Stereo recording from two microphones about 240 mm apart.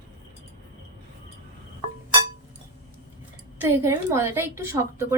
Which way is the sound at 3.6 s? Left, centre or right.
Centre.